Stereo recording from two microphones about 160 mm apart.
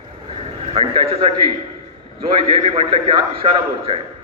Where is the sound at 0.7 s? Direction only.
35° right (ahead or behind).